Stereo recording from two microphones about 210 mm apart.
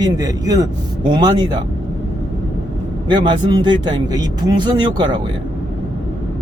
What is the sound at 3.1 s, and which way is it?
Speech, 20° right (ahead or behind).